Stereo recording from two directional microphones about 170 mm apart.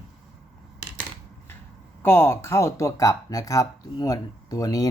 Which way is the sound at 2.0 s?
15° left (ahead or behind).